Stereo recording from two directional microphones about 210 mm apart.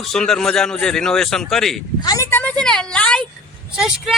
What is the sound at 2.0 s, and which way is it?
A woman's voice, 15° left (ahead or behind).